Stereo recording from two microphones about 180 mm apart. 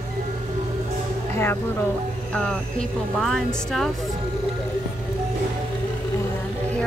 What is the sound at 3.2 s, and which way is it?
Speech, centre (ahead or behind).